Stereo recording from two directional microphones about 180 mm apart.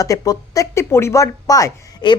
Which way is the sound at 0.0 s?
20° left (ahead or behind).